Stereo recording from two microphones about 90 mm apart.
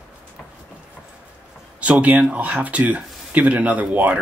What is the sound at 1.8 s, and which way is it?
Speech, 15° right (ahead or behind).